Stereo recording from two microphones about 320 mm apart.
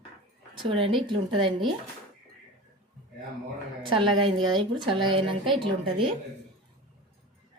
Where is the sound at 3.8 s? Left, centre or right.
Centre.